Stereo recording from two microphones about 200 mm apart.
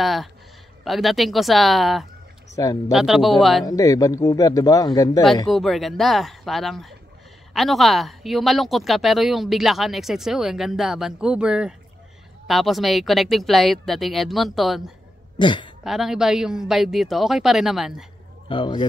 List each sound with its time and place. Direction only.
0.0 s speech: centre (ahead or behind)
2.5 s speech: 20° left (ahead or behind)
2.9 s speech: centre (ahead or behind)
3.6 s speech: 15° left (ahead or behind)
5.5 s speech: centre (ahead or behind)
15.3 s speech: 25° left (ahead or behind)
15.8 s speech: centre (ahead or behind)
18.5 s speech: 25° left (ahead or behind)